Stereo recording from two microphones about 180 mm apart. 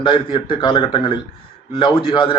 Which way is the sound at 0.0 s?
30° left (ahead or behind).